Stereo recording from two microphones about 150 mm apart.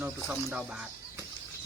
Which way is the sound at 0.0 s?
15° right (ahead or behind).